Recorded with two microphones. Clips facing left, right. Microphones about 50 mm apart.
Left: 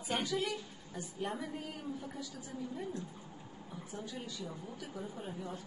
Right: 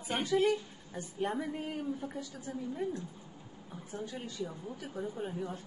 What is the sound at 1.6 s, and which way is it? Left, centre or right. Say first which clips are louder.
Speech: right 5 dB; right.